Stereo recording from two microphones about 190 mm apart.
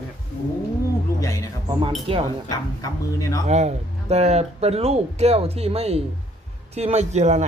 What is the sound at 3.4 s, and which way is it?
Speech, 35° right (ahead or behind).